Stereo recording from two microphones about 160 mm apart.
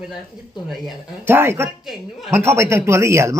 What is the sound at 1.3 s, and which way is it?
A man's voice, 15° right (ahead or behind).